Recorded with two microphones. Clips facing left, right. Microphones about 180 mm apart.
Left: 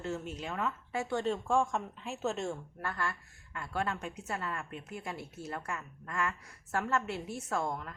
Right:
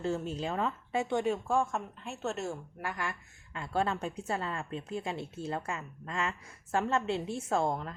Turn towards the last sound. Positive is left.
turn(degrees=-30)  # may be behind; listen again after turning